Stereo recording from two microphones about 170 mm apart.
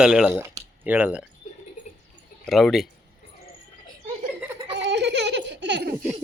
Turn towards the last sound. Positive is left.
turn(degrees=-90)